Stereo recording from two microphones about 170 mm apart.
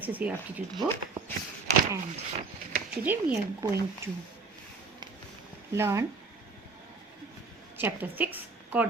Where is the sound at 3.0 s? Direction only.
10° right (ahead or behind).